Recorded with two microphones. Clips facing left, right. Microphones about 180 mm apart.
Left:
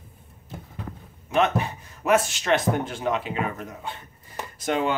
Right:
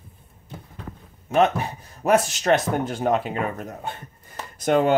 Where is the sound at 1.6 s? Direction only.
40° right (ahead or behind).